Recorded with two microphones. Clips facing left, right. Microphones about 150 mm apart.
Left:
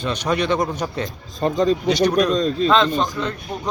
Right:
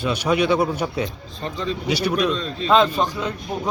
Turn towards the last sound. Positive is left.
turn(degrees=-10)  # may be behind; listen again after turning